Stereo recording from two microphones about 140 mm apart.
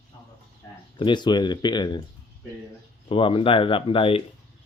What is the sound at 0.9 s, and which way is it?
Speech, 35° left (ahead or behind).